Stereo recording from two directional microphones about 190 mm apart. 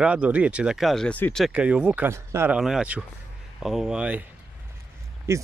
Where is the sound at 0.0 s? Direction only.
5° right (ahead or behind).